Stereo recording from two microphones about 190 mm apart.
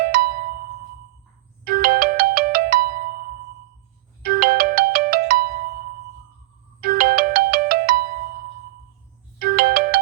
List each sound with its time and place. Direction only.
0.0 s music: 50° right (ahead or behind)
1.6 s ringtone: 50° right (ahead or behind)
4.2 s ringtone: 50° right (ahead or behind)
6.8 s ringtone: 50° right (ahead or behind)
9.4 s ringtone: 50° right (ahead or behind)